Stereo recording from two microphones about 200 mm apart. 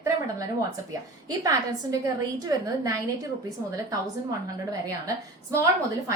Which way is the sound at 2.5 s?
15° right (ahead or behind).